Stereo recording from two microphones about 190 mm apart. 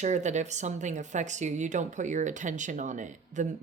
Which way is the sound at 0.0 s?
40° right (ahead or behind).